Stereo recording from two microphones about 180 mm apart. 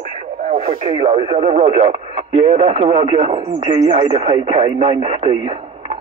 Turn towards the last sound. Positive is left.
turn(degrees=-35)  # may be behind; listen again after turning